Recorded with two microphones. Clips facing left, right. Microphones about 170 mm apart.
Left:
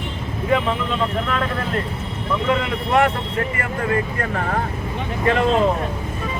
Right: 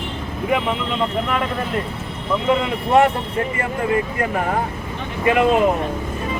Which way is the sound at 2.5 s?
20° right (ahead or behind).